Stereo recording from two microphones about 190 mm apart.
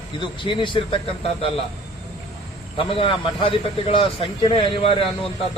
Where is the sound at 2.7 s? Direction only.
30° left (ahead or behind).